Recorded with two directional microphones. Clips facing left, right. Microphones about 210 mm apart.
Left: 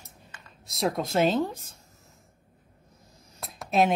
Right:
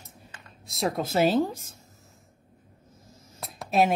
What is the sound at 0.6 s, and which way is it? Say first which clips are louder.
Speech: even; centre (ahead or behind).